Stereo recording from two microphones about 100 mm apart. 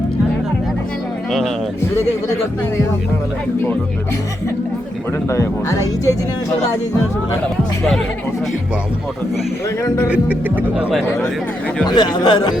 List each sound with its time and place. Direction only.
1.3 s speech: centre (ahead or behind)
5.3 s speech: 30° left (ahead or behind)
9.8 s speech: 30° left (ahead or behind)
10.1 s speech: 15° right (ahead or behind)
11.9 s a man's voice: 45° left (ahead or behind)